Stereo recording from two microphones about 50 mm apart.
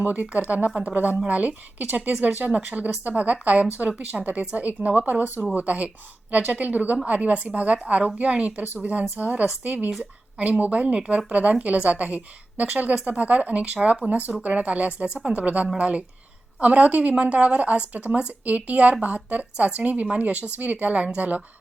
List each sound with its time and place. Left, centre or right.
0.0 s a woman's voice: right
0.7 s a woman's voice: centre
1.3 s a woman's voice: right
10.8 s a woman's voice: centre